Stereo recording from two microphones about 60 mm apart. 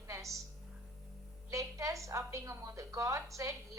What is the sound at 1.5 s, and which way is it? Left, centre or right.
A woman's voice, right.